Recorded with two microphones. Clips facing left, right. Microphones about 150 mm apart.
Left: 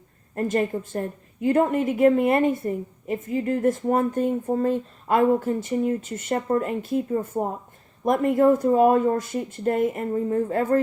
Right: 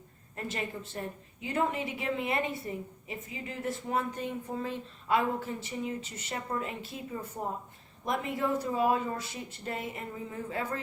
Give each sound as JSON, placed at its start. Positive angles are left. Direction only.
{"t": 0.3, "sound": "a woman's voice", "side_deg": 50}